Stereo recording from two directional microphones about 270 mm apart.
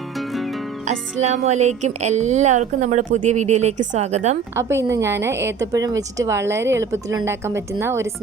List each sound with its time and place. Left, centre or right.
0.2 s music: centre
0.9 s speech: right
4.5 s speech: centre